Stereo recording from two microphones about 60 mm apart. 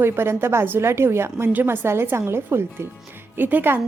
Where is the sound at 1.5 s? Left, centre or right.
Right.